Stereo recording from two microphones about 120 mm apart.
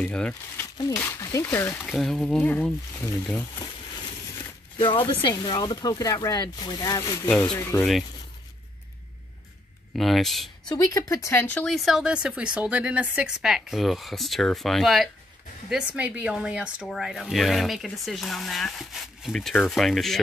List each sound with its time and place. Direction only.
0.0 s speech: 10° left (ahead or behind)
1.2 s speech: 25° left (ahead or behind)
1.8 s speech: centre (ahead or behind)
2.4 s speech: 15° left (ahead or behind)
4.7 s speech: 45° left (ahead or behind); by 7.2 s 25° left (ahead or behind)
7.2 s speech: 10° left (ahead or behind)
7.5 s speech: 25° left (ahead or behind)
9.9 s speech: centre (ahead or behind)
10.7 s speech: 30° left (ahead or behind)
11.4 s speech: 10° left (ahead or behind)